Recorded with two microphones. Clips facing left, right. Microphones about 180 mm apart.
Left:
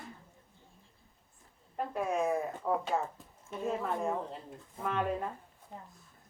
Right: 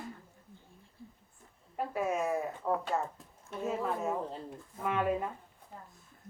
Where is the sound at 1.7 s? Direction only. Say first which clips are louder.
Even; 5° right (ahead or behind).